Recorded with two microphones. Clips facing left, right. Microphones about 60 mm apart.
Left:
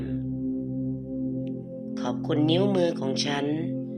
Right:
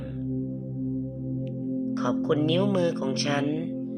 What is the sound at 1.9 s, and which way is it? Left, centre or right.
Speech, right.